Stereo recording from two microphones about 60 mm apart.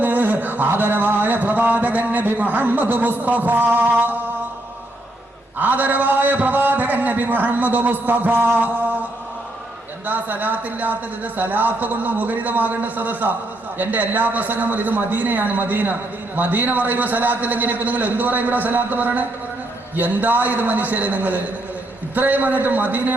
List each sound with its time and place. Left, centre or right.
0.0 s a sound: right
5.5 s a man's voice: right
10.1 s a man's voice: right